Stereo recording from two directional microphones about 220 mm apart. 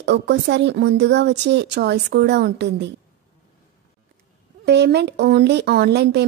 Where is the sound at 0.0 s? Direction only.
50° right (ahead or behind).